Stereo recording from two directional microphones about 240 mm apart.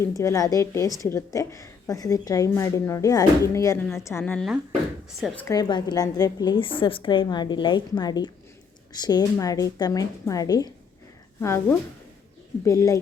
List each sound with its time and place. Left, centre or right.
0.0 s a woman's voice: centre
5.5 s a woman's voice: centre